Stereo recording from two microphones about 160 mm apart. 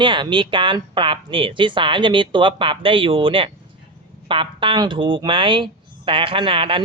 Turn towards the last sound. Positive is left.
turn(degrees=-35)  # may be behind; listen again after turning